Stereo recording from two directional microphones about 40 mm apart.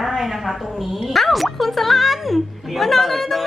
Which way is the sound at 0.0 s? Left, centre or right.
Centre.